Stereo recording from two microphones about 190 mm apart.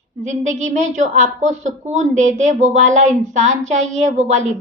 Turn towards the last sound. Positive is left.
turn(degrees=-40)  # may be behind; listen again after turning